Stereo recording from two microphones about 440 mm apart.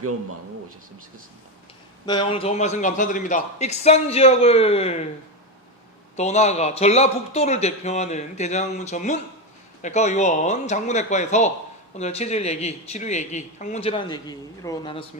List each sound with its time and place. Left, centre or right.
2.0 s speech: centre
6.1 s speech: centre